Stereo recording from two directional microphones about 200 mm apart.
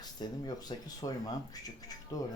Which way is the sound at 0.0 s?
20° left (ahead or behind).